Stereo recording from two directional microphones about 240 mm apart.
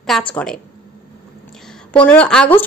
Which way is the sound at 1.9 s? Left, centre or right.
Centre.